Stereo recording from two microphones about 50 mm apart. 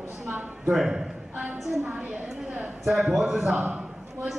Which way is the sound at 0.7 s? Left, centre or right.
Centre.